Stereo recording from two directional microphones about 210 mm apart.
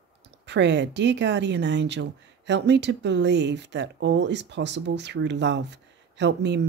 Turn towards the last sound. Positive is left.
turn(degrees=-55)  # may be behind; listen again after turning